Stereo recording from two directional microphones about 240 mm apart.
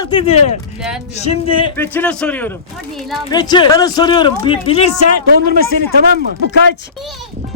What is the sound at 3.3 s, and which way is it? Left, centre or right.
Speech, centre.